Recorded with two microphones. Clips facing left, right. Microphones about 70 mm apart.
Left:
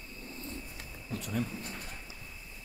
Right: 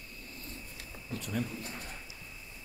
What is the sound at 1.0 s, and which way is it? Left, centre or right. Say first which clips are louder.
Speech: left 1 dB; centre.